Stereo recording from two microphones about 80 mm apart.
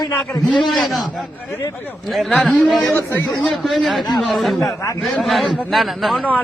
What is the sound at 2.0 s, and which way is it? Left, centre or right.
A man's voice, centre.